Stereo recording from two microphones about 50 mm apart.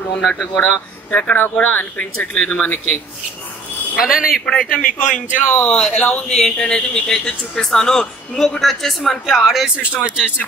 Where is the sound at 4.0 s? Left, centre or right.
Centre.